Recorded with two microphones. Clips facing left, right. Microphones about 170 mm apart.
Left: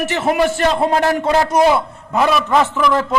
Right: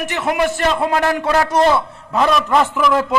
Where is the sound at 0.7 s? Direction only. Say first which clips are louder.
Left 2 dB; 30° left (ahead or behind).